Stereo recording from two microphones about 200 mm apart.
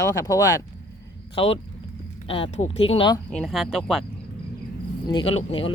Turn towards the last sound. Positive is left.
turn(degrees=30)  # may be behind; listen again after turning